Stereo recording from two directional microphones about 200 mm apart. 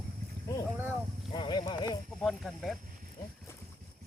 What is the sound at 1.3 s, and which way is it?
Speech, 20° left (ahead or behind).